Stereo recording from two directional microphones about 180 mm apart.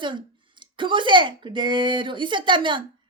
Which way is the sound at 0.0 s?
25° right (ahead or behind).